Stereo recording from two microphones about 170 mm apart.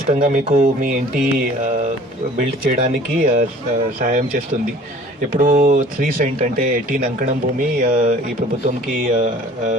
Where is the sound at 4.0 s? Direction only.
55° right (ahead or behind).